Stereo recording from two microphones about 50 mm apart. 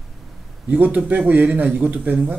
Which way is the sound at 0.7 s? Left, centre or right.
Right.